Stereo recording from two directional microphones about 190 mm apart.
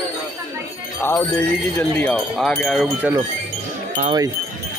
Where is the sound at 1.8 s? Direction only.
10° left (ahead or behind).